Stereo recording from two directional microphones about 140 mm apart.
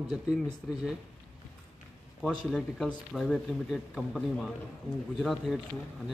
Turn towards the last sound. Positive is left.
turn(degrees=0)  # may be behind; listen again after turning